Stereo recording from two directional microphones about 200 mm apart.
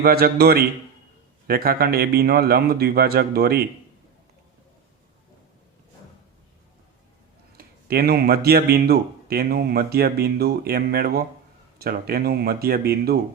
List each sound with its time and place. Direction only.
0.0 s a man's voice: 50° right (ahead or behind)
7.5 s a man's voice: 50° right (ahead or behind)